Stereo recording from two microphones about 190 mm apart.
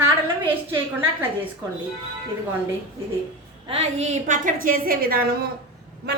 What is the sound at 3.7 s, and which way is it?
A woman's voice, 35° right (ahead or behind).